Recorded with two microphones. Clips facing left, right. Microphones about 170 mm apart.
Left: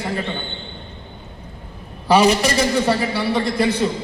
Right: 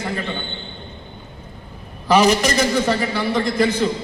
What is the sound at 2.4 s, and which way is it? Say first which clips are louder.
A man's voice: even; 30° left (ahead or behind).